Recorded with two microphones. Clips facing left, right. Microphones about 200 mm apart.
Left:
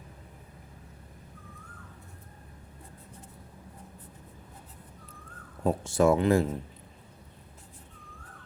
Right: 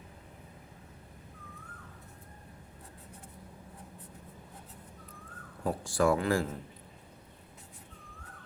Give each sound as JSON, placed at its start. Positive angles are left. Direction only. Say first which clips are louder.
{"t": 5.6, "sound": "speech", "louder": "left 4 dB", "side_deg": 20}